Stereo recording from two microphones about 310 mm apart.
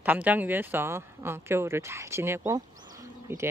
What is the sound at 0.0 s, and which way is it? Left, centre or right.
Speech, centre.